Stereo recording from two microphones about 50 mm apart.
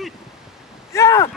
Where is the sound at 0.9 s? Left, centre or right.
Left.